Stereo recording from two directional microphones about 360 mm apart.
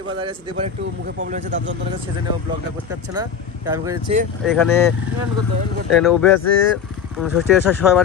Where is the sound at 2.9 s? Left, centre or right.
Centre.